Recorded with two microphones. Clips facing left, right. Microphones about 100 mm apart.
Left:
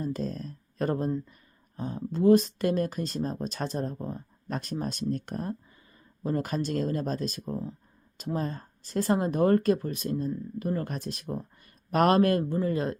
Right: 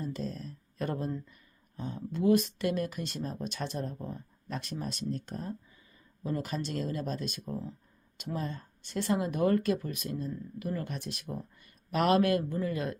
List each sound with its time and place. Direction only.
0.0 s speech: 45° left (ahead or behind)
1.3 s a sound: 40° left (ahead or behind)
2.0 s speech: 35° left (ahead or behind); by 5.5 s 60° left (ahead or behind)
6.2 s speech: 50° left (ahead or behind)